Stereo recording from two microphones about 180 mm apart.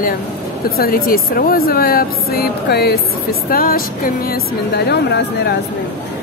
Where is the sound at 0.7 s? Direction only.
55° left (ahead or behind).